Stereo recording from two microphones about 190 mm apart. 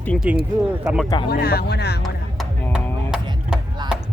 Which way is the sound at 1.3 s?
55° left (ahead or behind).